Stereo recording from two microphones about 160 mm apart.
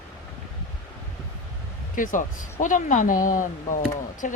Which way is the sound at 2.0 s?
55° left (ahead or behind).